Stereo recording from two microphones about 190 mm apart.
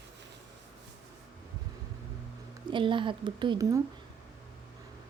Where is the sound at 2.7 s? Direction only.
25° right (ahead or behind).